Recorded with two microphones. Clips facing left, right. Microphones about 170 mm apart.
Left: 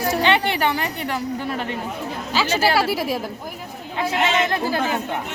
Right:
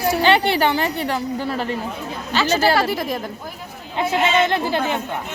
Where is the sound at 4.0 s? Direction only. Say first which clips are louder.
Right 3 dB; 25° right (ahead or behind).